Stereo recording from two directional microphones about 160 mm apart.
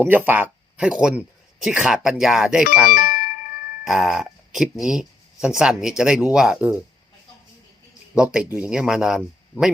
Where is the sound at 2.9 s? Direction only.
70° left (ahead or behind).